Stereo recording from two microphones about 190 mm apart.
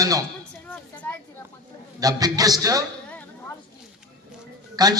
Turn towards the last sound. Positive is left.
turn(degrees=-20)  # may be behind; listen again after turning